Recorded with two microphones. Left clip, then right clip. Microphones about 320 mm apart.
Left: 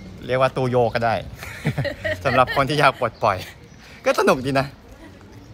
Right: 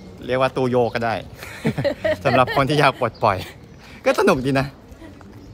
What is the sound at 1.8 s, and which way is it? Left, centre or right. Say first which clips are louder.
Speech: right 5 dB; right.